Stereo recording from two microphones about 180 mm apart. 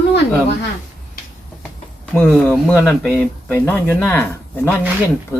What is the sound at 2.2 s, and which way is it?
Speech, 10° left (ahead or behind).